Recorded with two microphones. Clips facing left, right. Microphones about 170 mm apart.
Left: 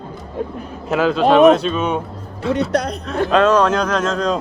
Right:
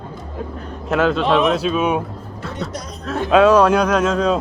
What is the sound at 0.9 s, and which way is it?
A man's voice, centre (ahead or behind).